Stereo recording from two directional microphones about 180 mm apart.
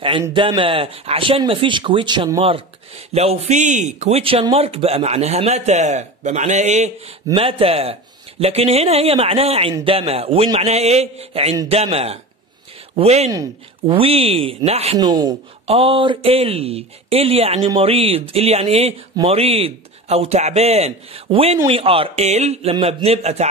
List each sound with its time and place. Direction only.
0.3 s speech: 30° right (ahead or behind)
2.4 s speech: 35° right (ahead or behind)
13.3 s speech: 20° right (ahead or behind)
13.9 s speech: 30° right (ahead or behind)
15.0 s speech: 20° right (ahead or behind)
15.6 s speech: 35° right (ahead or behind)